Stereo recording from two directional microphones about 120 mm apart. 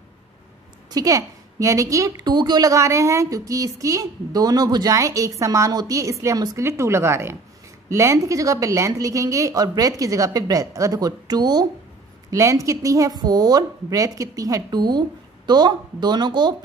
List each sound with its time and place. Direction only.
0.8 s a woman's voice: 30° right (ahead or behind)